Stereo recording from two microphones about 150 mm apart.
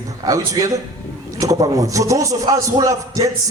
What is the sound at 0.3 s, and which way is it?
A man's voice, 20° right (ahead or behind).